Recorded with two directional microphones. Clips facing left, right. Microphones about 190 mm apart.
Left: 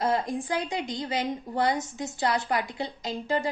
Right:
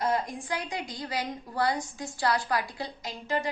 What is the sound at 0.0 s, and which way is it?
A woman's voice, 25° left (ahead or behind).